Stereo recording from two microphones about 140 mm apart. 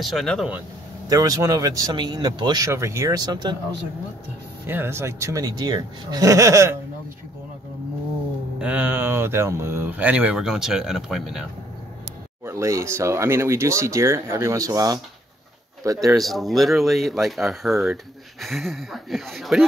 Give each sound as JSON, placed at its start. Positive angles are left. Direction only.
{"t": 0.0, "sound": "speech", "side_deg": 0}
{"t": 1.0, "sound": "speech", "side_deg": -25}
{"t": 4.6, "sound": "speech", "side_deg": -15}
{"t": 8.5, "sound": "speech", "side_deg": -10}
{"t": 12.4, "sound": "speech", "side_deg": -20}
{"t": 16.2, "sound": "speech", "side_deg": 0}